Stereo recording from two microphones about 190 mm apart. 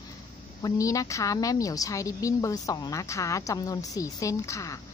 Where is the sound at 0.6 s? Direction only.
15° left (ahead or behind).